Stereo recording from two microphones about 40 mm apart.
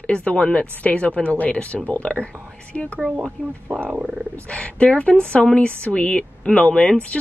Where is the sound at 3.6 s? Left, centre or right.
Right.